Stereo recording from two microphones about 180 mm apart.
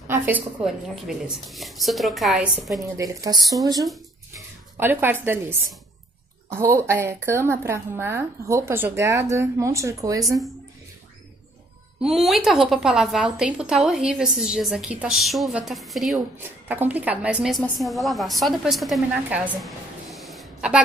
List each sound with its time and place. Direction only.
0.1 s a sound: 10° right (ahead or behind)
0.6 s a woman's voice: 5° right (ahead or behind)
2.8 s speech: 20° right (ahead or behind)
4.3 s a sound: 10° right (ahead or behind)
6.5 s a woman's voice: 15° right (ahead or behind)
12.0 s a woman's voice: centre (ahead or behind)